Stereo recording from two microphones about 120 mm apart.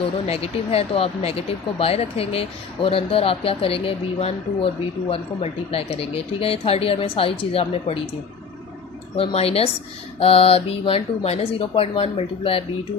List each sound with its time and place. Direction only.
0.0 s speech: 55° left (ahead or behind)
9.1 s a woman's voice: 55° left (ahead or behind)